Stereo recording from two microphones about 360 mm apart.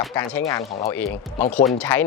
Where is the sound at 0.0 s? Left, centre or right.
Centre.